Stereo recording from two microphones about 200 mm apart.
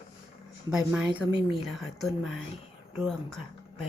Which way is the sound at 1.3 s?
25° left (ahead or behind).